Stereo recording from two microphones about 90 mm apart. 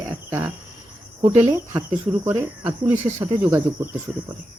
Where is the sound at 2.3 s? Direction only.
20° right (ahead or behind).